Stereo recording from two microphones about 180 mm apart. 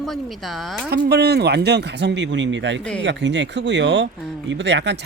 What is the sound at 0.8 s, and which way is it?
Speech, 65° right (ahead or behind).